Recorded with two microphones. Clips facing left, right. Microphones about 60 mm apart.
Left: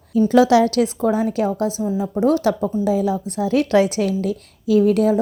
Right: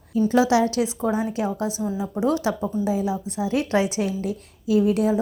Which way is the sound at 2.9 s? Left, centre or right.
Left.